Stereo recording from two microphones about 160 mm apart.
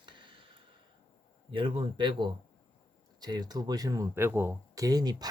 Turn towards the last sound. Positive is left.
turn(degrees=-25)  # may be behind; listen again after turning